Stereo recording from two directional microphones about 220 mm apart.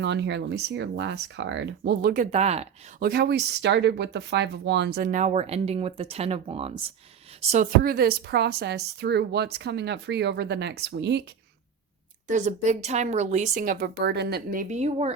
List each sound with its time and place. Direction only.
0.0 s speech: 50° right (ahead or behind)
2.3 s speech: 30° right (ahead or behind)
3.0 s speech: 45° right (ahead or behind); by 6.9 s 25° right (ahead or behind)
7.5 s speech: 40° right (ahead or behind)
12.3 s speech: 35° right (ahead or behind)